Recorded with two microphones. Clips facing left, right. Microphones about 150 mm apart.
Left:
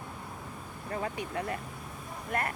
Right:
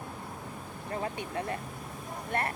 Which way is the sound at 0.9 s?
30° right (ahead or behind).